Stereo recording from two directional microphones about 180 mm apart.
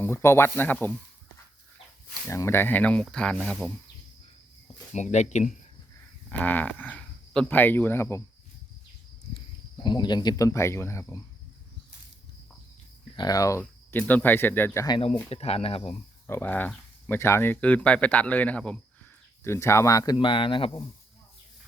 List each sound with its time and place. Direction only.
0.0 s speech: 15° left (ahead or behind)
2.2 s speech: 15° left (ahead or behind)
4.9 s speech: 40° left (ahead or behind)
6.3 s speech: 10° left (ahead or behind)
9.7 s speech: 25° left (ahead or behind)
13.1 s speech: 20° left (ahead or behind)
15.3 s speech: 35° left (ahead or behind)
16.2 s speech: 10° left (ahead or behind); by 20.8 s 30° left (ahead or behind)